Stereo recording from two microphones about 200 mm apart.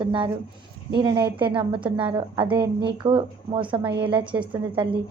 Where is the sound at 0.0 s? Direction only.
25° right (ahead or behind).